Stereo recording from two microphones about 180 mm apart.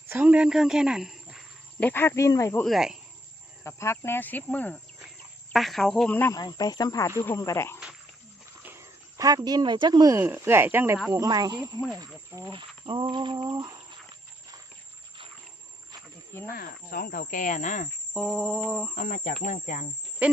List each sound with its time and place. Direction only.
0.1 s speech: 10° right (ahead or behind)
1.9 s speech: 10° left (ahead or behind)
2.6 s a sound: centre (ahead or behind)
3.6 s speech: 15° left (ahead or behind)
8.6 s speech: 15° right (ahead or behind)
16.5 s speech: 55° left (ahead or behind)
18.1 s a sound: centre (ahead or behind)
18.9 s speech: 50° left (ahead or behind)
20.2 s speech: 5° right (ahead or behind)